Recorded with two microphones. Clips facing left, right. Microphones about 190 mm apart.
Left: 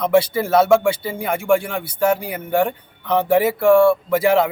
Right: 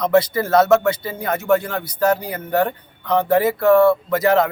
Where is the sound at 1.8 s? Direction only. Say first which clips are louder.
Even; 25° left (ahead or behind).